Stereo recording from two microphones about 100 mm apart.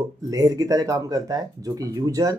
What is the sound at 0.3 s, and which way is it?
Speech, 35° right (ahead or behind).